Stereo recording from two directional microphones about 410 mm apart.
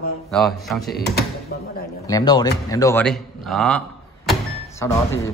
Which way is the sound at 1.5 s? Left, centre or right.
Left.